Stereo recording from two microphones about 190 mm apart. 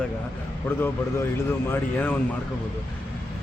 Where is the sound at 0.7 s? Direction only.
10° left (ahead or behind).